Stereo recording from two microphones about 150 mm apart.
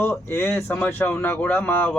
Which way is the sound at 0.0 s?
15° left (ahead or behind).